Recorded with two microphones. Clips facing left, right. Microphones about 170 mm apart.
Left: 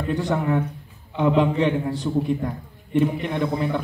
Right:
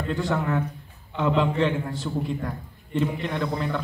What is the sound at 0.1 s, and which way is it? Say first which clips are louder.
A man's voice: left 3 dB; 15° left (ahead or behind).